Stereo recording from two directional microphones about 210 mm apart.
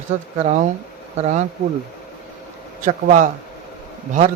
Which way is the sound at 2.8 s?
35° right (ahead or behind).